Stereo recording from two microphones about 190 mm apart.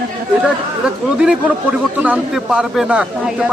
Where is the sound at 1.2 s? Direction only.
5° right (ahead or behind).